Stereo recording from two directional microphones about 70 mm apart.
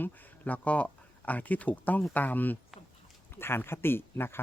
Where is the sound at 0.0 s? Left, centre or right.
Left.